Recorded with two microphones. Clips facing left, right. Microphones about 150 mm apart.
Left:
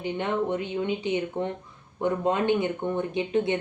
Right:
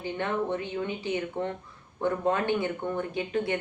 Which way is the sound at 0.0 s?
20° left (ahead or behind).